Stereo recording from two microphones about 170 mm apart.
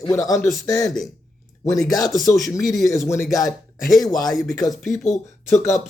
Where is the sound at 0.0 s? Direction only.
20° left (ahead or behind).